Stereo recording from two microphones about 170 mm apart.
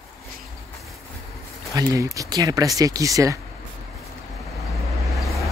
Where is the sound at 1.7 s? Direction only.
20° right (ahead or behind).